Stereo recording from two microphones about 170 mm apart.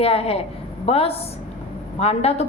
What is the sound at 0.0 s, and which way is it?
A woman's voice, 35° left (ahead or behind).